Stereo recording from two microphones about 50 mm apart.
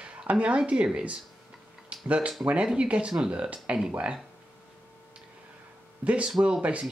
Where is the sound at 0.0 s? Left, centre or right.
Right.